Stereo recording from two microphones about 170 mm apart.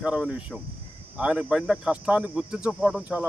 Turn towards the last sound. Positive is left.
turn(degrees=-10)  # may be behind; listen again after turning